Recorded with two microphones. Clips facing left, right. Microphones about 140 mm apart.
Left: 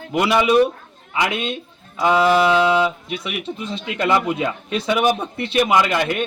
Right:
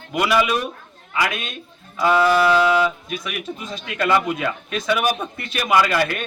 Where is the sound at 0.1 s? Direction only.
25° left (ahead or behind).